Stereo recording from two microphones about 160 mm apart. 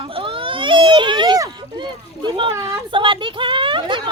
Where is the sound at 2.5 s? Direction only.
20° right (ahead or behind).